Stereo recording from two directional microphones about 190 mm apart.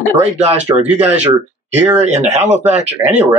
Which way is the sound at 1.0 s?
10° right (ahead or behind).